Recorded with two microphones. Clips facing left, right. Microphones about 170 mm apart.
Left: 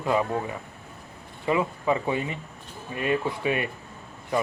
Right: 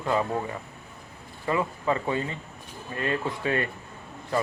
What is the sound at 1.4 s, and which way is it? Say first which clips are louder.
Speech: left 2 dB; 15° left (ahead or behind).